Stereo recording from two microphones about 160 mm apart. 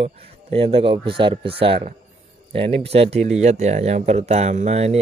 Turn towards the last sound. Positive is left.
turn(degrees=-45)  # may be behind; listen again after turning